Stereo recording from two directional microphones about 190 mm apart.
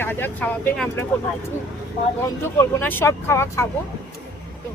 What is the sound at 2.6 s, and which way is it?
Speech, 10° left (ahead or behind).